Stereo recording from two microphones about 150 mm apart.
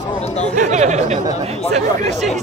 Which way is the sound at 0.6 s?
50° right (ahead or behind).